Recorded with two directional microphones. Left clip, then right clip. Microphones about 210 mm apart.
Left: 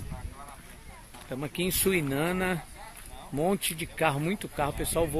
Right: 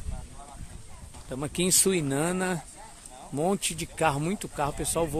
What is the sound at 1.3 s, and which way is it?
Speech, 20° right (ahead or behind).